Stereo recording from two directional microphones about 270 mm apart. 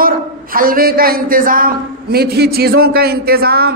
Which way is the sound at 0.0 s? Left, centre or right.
Right.